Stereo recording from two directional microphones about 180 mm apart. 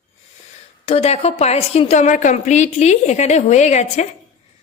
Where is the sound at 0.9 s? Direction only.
35° left (ahead or behind).